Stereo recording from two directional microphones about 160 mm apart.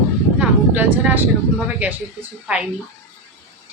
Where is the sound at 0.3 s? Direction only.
10° right (ahead or behind).